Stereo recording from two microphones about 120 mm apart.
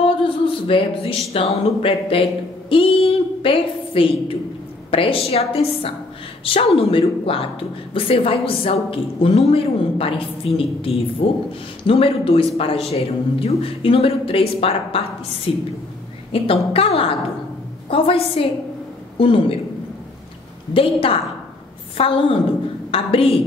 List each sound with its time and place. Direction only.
0.0 s a man's voice: 50° left (ahead or behind)
20.7 s a man's voice: 50° left (ahead or behind)